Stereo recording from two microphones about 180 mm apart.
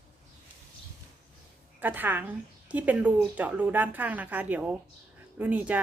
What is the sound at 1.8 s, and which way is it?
A woman's voice, 10° right (ahead or behind).